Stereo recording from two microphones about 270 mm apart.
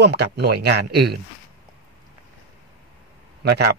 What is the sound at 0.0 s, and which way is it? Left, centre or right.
Speech, right.